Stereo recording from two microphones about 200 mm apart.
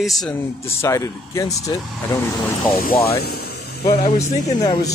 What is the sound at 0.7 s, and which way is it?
Speech, 15° left (ahead or behind).